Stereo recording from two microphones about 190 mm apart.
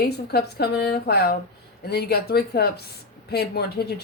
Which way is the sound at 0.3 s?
55° left (ahead or behind).